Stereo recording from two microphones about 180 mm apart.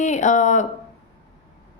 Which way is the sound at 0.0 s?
45° left (ahead or behind).